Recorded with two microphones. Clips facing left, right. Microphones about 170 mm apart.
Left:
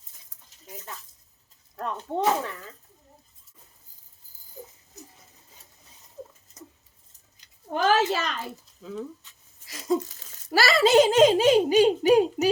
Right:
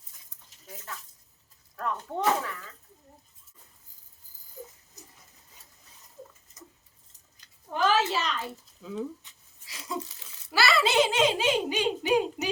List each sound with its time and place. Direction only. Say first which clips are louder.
0.7 s speech: left 1 dB; 20° left (ahead or behind)
7.9 s a woman's voice: left 3 dB; 55° left (ahead or behind)
8.8 s speech: right 1 dB; centre (ahead or behind)
9.6 s a child's voice: left 10 dB; 45° left (ahead or behind)